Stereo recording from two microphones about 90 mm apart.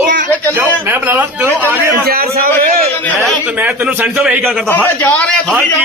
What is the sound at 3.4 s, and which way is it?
Speech, 15° right (ahead or behind).